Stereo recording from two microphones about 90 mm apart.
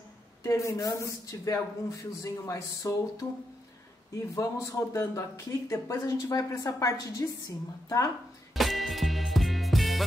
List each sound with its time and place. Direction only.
0.4 s speech: 35° left (ahead or behind)
4.4 s speech: 35° left (ahead or behind)
8.5 s music: centre (ahead or behind)